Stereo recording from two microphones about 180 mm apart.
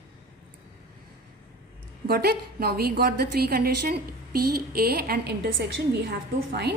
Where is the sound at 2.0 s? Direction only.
60° right (ahead or behind).